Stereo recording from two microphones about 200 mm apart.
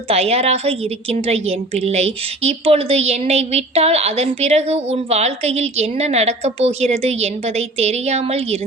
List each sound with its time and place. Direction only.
0.1 s a woman's voice: 30° right (ahead or behind)